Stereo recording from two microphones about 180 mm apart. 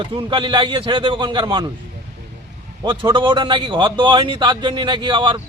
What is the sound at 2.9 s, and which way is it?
Speech, 25° right (ahead or behind).